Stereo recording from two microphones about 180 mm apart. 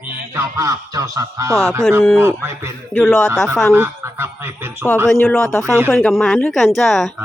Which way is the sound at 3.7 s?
15° right (ahead or behind).